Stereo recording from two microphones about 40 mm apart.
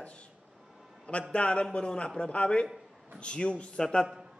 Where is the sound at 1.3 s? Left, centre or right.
Left.